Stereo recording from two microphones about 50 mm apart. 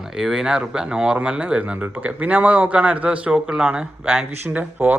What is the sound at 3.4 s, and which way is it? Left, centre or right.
Speech, centre.